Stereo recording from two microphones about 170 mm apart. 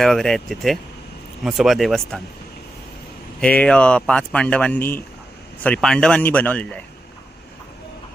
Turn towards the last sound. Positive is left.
turn(degrees=5)  # may be behind; listen again after turning